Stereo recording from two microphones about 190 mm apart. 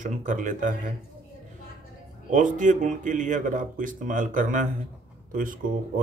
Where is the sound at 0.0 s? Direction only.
40° right (ahead or behind).